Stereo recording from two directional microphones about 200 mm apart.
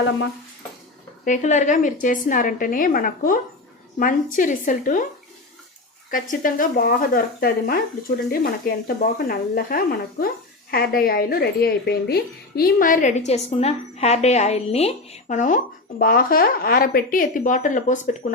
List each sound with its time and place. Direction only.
1.2 s a woman's voice: 40° left (ahead or behind)
6.1 s a woman's voice: 40° left (ahead or behind)